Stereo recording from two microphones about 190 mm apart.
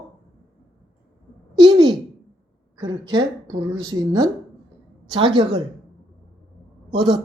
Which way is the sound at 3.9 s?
90° right.